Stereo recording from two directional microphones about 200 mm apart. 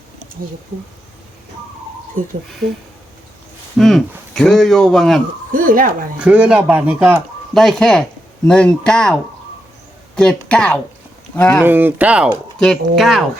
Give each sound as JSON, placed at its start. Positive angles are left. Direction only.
{"t": 3.8, "sound": "speech", "side_deg": 0}
{"t": 5.5, "sound": "speech", "side_deg": -45}
{"t": 6.1, "sound": "speech", "side_deg": -5}
{"t": 7.5, "sound": "speech", "side_deg": 0}
{"t": 10.2, "sound": "speech", "side_deg": 5}
{"t": 11.6, "sound": "speech", "side_deg": -10}